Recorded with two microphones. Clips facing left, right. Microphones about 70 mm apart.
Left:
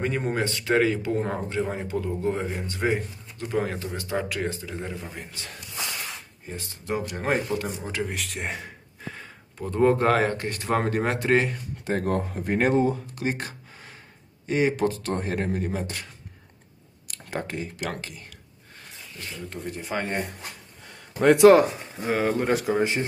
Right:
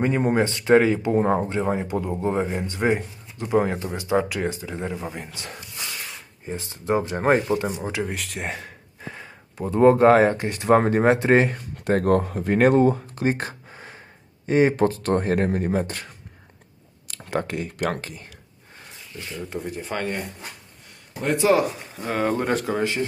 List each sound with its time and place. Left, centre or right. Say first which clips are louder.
0.0 s speech: right 6 dB; right
7.3 s speech: right 6 dB; right
7.9 s speech: right 2 dB; centre; by 11.5 s right
11.5 s speech: right 5 dB; right
17.3 s speech: right 5 dB; right
17.7 s speech: right 6 dB; right
19.5 s speech: right 2 dB; centre
20.0 s speech: even; left
21.2 s speech: left 7 dB; left
22.0 s speech: even; centre
22.8 s speech: right 1 dB; left